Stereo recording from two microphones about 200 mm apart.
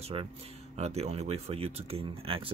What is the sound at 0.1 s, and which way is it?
Speech, 25° right (ahead or behind).